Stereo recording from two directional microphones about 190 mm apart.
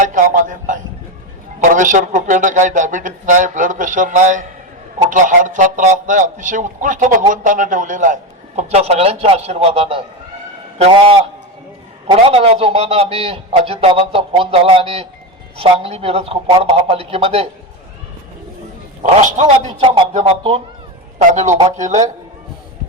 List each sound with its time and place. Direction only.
0.0 s a man's voice: 45° right (ahead or behind)
19.2 s a man's voice: 35° right (ahead or behind)